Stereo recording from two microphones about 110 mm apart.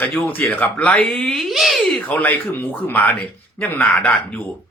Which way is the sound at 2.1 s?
15° left (ahead or behind).